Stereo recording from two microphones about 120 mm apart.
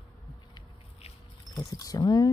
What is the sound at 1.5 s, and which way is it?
Speech, 30° left (ahead or behind).